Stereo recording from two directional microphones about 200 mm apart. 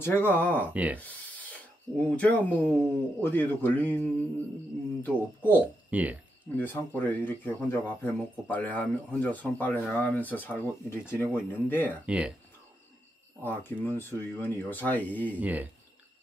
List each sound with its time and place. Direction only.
0.0 s speech: 10° left (ahead or behind)
0.7 s speech: 5° right (ahead or behind)
1.0 s speech: 5° left (ahead or behind)
5.6 s speech: 5° right (ahead or behind)
6.5 s speech: 10° left (ahead or behind)
12.1 s speech: 5° right (ahead or behind)
13.4 s speech: 10° left (ahead or behind)
15.3 s speech: 10° right (ahead or behind)